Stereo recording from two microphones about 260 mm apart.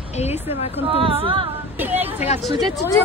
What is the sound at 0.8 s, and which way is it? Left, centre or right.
Speech, right.